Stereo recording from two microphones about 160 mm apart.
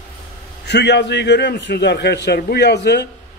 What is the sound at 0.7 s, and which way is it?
A man's voice, 90° left.